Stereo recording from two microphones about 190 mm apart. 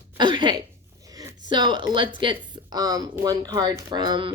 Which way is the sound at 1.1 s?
20° right (ahead or behind).